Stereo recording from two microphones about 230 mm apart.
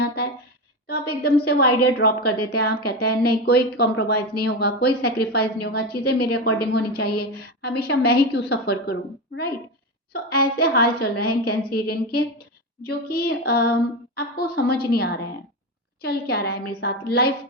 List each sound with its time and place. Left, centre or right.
0.9 s a sound: left
1.5 s a woman's voice: left
2.2 s a woman's voice: left
2.5 s a woman's voice: left